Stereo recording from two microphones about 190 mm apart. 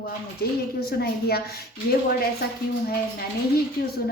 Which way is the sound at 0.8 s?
55° left (ahead or behind).